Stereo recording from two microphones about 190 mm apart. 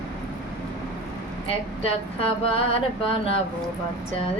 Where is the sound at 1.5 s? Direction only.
30° left (ahead or behind).